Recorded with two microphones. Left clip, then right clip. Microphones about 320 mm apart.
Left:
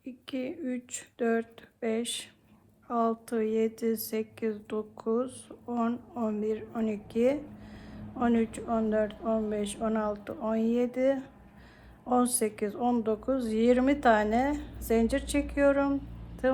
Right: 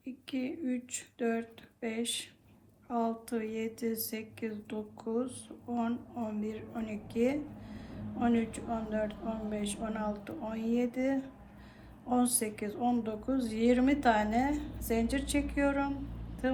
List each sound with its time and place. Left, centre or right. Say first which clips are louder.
0.0 s speech: left 2 dB; centre